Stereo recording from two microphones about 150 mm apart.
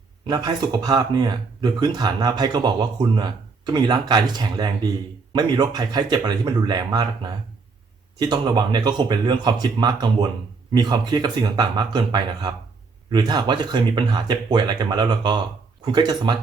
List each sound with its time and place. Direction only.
0.3 s speech: 25° right (ahead or behind)